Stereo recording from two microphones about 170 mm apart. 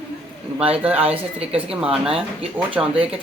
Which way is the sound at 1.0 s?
35° right (ahead or behind).